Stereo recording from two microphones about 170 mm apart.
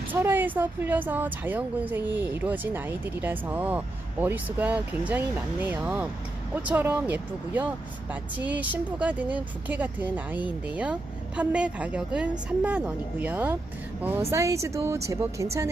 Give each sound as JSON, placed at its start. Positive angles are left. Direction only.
{"t": 0.1, "sound": "speech", "side_deg": -10}